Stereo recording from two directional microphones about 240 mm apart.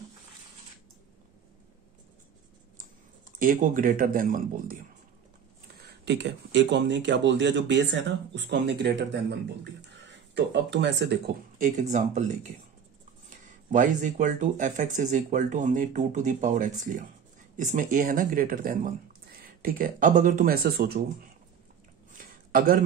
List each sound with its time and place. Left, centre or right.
3.3 s speech: right
5.9 s a man's voice: right
13.7 s speech: right
22.1 s a sound: right